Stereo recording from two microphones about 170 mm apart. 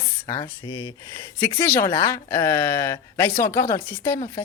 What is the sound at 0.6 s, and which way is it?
Speech, 25° left (ahead or behind).